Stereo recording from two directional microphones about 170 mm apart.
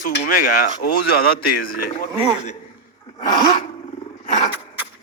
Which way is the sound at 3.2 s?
45° left (ahead or behind).